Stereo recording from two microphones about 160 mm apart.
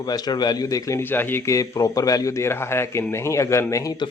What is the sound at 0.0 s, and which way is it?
Speech, 25° left (ahead or behind).